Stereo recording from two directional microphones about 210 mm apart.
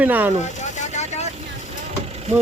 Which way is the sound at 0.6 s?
35° left (ahead or behind).